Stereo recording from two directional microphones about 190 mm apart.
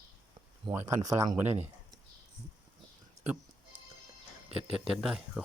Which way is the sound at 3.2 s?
35° right (ahead or behind).